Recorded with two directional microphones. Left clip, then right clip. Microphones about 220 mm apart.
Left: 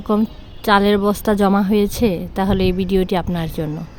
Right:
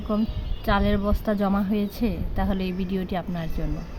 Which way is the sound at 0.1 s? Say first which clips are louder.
Left 8 dB; 50° left (ahead or behind).